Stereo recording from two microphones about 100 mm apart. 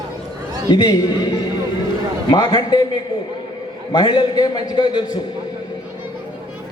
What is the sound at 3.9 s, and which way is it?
A man's voice, 50° left (ahead or behind).